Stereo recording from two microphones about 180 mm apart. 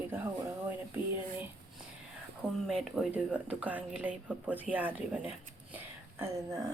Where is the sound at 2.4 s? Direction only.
Centre (ahead or behind).